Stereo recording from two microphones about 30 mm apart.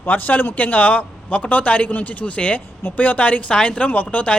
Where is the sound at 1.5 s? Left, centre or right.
Left.